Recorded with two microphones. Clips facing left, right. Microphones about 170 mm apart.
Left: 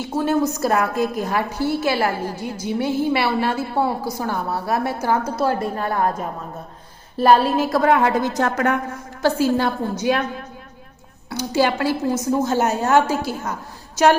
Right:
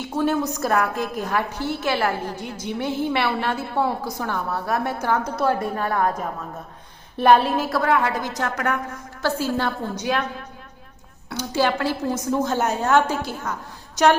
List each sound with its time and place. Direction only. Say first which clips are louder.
0.3 s a woman's voice: left 4 dB; 10° left (ahead or behind)
7.2 s a woman's voice: left 1 dB; 5° left (ahead or behind)
7.8 s a woman's voice: left 5 dB; 25° left (ahead or behind)
9.2 s a woman's voice: left 5 dB; 15° left (ahead or behind)
11.3 s a woman's voice: left 2 dB; 10° left (ahead or behind)